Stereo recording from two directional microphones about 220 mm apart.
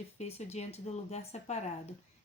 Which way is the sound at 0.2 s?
30° left (ahead or behind).